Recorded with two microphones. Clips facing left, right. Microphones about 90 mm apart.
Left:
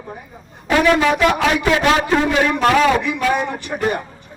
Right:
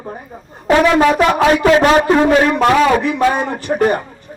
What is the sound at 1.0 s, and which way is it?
A man's voice, 40° right (ahead or behind).